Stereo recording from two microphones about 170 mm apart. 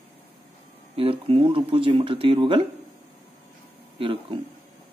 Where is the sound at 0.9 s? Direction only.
35° right (ahead or behind).